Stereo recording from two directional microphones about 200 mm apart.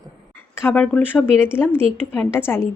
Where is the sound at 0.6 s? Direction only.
10° left (ahead or behind).